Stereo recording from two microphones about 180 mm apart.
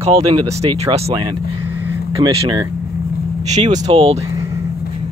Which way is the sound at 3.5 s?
40° right (ahead or behind).